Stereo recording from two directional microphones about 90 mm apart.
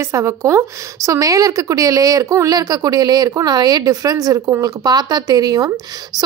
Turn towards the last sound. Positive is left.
turn(degrees=-45)  # may be behind; listen again after turning